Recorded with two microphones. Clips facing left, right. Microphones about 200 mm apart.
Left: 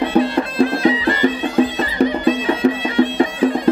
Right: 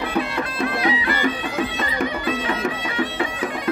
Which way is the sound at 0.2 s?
30° left (ahead or behind).